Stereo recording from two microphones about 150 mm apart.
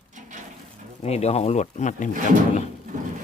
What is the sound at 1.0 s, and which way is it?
Speech, 45° left (ahead or behind).